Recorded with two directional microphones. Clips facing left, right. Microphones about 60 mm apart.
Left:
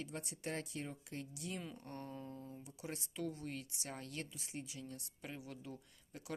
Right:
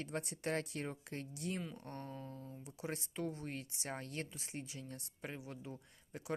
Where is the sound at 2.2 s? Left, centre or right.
Left.